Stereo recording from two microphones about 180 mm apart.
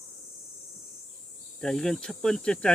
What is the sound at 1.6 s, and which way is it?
Speech, 5° left (ahead or behind).